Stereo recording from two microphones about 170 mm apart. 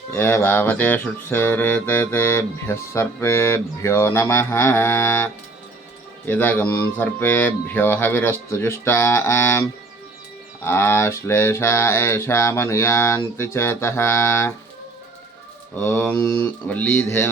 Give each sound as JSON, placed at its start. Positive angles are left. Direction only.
{"t": 0.1, "sound": "music", "side_deg": 15}
{"t": 15.7, "sound": "music", "side_deg": 10}